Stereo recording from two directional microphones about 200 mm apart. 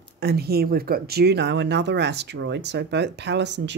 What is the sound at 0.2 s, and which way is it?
Speech, 50° right (ahead or behind).